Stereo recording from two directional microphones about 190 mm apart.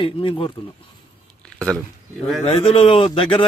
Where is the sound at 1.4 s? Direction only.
5° left (ahead or behind).